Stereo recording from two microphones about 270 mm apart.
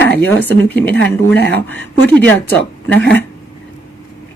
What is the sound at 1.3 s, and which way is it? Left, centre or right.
Speech, left.